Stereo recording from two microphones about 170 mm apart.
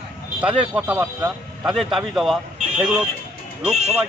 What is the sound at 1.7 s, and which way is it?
Speech, centre (ahead or behind).